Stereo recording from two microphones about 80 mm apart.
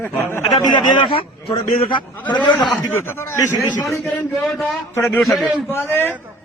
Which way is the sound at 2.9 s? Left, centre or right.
Left.